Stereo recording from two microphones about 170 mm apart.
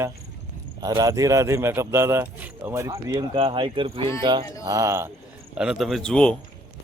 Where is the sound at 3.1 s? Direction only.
25° right (ahead or behind).